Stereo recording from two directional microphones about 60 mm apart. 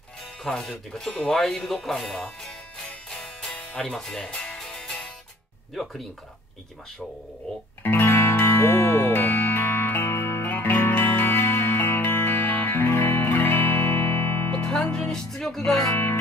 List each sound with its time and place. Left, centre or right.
0.4 s speech: centre
3.1 s music: centre
7.8 s music: left
9.1 s music: left
14.6 s music: left